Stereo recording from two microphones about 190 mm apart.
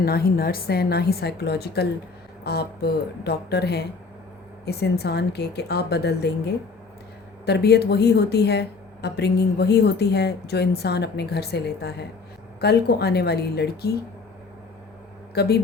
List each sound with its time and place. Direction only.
0.0 s speech: 55° left (ahead or behind)
7.4 s speech: 60° left (ahead or behind)
15.4 s speech: 55° left (ahead or behind)